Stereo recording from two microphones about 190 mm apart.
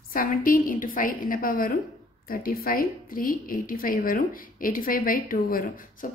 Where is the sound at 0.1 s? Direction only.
50° left (ahead or behind).